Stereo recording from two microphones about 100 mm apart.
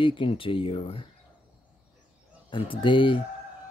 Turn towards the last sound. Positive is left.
turn(degrees=55)  # may be behind; listen again after turning